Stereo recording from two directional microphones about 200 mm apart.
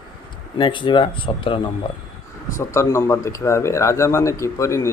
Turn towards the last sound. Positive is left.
turn(degrees=15)  # may be behind; listen again after turning